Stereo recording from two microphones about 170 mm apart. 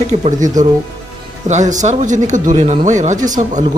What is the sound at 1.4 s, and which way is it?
Speech, 45° right (ahead or behind).